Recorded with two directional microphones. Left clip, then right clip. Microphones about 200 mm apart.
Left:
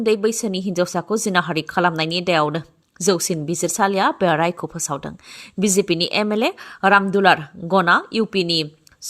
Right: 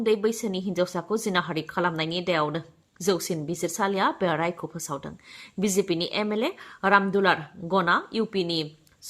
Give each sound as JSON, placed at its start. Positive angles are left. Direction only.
{"t": 0.0, "sound": "a woman's voice", "side_deg": 30}